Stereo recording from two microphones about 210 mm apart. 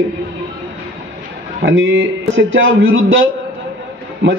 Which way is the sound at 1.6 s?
65° right (ahead or behind).